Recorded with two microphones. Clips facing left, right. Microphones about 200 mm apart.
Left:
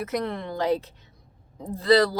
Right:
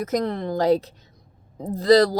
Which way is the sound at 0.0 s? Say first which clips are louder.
Right 4 dB; 40° right (ahead or behind).